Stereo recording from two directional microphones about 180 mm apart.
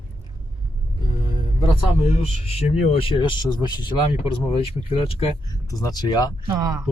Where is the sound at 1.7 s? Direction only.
35° left (ahead or behind).